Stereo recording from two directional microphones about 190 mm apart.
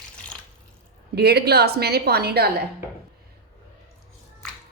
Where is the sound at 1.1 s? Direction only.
55° right (ahead or behind).